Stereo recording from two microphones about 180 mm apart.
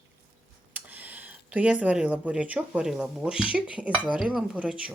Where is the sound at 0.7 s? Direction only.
10° right (ahead or behind).